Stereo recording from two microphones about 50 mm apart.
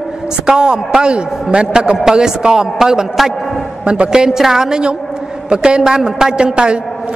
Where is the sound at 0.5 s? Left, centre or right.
Centre.